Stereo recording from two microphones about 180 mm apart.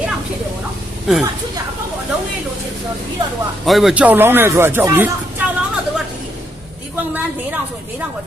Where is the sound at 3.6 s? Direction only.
Centre (ahead or behind).